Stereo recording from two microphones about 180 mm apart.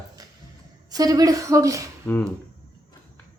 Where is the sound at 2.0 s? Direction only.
10° left (ahead or behind).